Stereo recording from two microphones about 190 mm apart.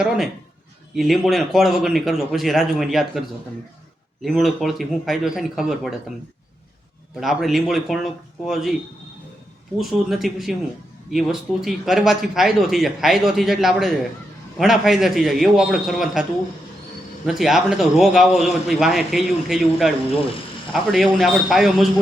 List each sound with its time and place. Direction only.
0.9 s speech: centre (ahead or behind)
7.2 s speech: centre (ahead or behind)
9.7 s speech: centre (ahead or behind)
17.2 s speech: centre (ahead or behind)